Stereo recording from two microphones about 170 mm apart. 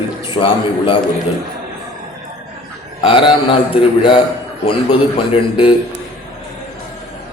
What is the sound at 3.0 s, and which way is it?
A man's voice, 30° left (ahead or behind).